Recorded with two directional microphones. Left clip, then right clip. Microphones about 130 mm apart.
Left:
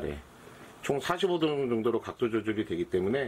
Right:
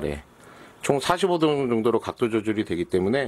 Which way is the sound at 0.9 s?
60° right (ahead or behind).